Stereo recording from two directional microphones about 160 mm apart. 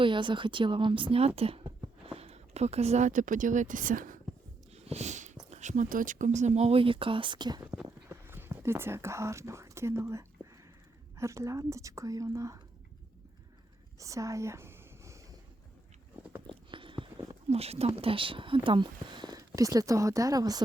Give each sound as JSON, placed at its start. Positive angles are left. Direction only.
{"t": 0.0, "sound": "speech", "side_deg": -30}
{"t": 4.7, "sound": "a sound", "side_deg": -40}
{"t": 5.5, "sound": "speech", "side_deg": -45}
{"t": 8.1, "sound": "speech", "side_deg": -15}
{"t": 14.0, "sound": "a sound", "side_deg": -20}
{"t": 16.5, "sound": "speech", "side_deg": -30}